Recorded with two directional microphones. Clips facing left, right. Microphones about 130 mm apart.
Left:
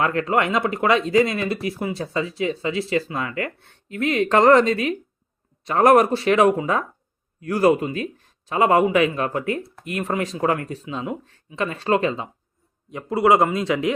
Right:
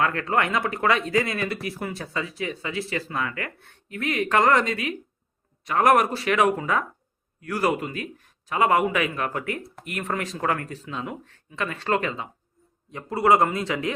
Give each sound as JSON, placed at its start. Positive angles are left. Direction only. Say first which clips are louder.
{"t": 0.0, "sound": "a man's voice", "louder": "left 3 dB", "side_deg": 20}